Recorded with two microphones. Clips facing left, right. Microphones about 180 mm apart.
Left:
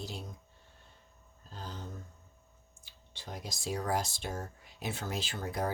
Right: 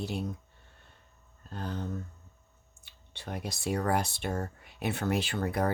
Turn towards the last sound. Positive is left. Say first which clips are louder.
# right 5 dB
turn(degrees=-65)  # may be behind; listen again after turning